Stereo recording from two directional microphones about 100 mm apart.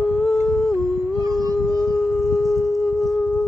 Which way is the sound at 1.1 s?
35° right (ahead or behind).